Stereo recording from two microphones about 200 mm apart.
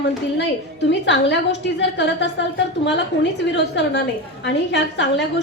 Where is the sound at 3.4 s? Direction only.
60° left (ahead or behind).